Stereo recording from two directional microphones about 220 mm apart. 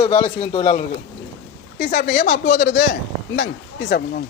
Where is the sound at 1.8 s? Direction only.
40° left (ahead or behind).